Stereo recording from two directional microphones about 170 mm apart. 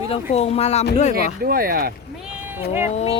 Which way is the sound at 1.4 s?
60° right (ahead or behind).